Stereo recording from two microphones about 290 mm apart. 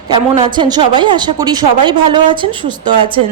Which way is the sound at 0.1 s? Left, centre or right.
Centre.